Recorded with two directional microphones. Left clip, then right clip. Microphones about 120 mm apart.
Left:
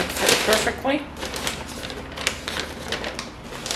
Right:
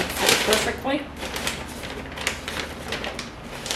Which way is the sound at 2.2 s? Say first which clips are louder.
Left 2 dB; 10° left (ahead or behind).